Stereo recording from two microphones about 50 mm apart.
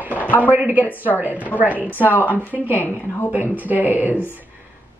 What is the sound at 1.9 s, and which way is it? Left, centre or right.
A woman's voice, left.